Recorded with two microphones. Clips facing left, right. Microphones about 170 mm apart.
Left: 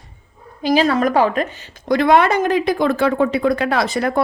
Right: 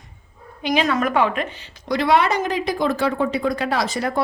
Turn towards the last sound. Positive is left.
turn(degrees=60)  # may be behind; listen again after turning